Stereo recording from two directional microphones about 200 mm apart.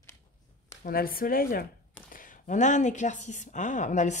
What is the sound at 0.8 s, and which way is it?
Speech, 45° left (ahead or behind).